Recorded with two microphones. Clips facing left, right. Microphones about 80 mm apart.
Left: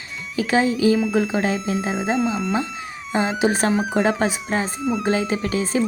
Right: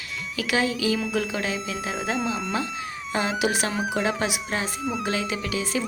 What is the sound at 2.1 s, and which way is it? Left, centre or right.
Speech, centre.